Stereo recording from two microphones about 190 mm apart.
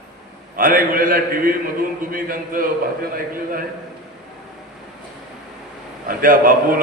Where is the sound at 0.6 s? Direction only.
50° right (ahead or behind).